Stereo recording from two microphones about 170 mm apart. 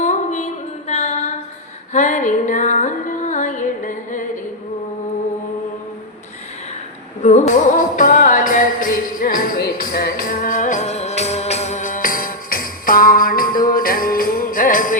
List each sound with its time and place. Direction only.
0.0 s female singing: 45° left (ahead or behind)
1.9 s music: 45° left (ahead or behind)
7.2 s music: 45° left (ahead or behind)